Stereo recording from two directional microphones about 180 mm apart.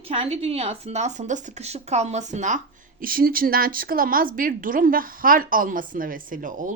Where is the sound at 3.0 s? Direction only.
55° right (ahead or behind).